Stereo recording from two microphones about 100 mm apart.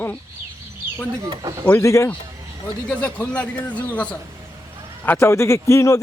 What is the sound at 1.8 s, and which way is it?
Speech, 30° left (ahead or behind).